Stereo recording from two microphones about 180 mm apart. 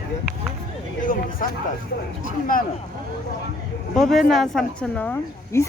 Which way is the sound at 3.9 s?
Centre (ahead or behind).